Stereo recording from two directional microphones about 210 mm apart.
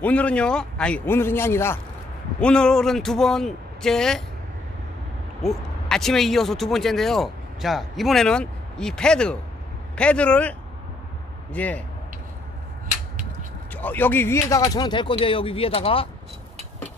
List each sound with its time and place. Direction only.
0.0 s speech: 5° left (ahead or behind)
5.4 s speech: centre (ahead or behind)
11.5 s speech: 5° left (ahead or behind)
13.7 s speech: 10° left (ahead or behind); by 16.1 s 25° left (ahead or behind)